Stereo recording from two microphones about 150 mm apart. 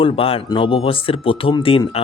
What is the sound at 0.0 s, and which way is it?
Speech, 40° left (ahead or behind).